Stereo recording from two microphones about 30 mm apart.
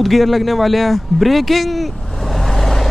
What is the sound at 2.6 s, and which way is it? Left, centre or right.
Vehicle, centre.